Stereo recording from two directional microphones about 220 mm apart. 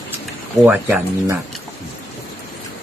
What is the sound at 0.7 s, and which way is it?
Speech, 10° right (ahead or behind).